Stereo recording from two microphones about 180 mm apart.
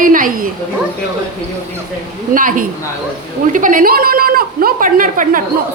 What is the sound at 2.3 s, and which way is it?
A man's voice, 50° right (ahead or behind).